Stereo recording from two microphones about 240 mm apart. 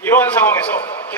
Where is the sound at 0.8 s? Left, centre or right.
Left.